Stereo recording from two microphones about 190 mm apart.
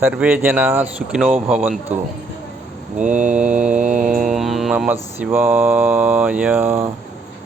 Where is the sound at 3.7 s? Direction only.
40° right (ahead or behind).